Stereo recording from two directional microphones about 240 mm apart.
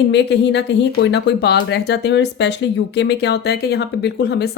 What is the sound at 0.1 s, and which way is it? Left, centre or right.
Speech, left.